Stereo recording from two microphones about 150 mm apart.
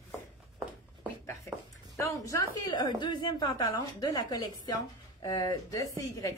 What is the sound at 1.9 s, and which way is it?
A woman's voice, 20° left (ahead or behind).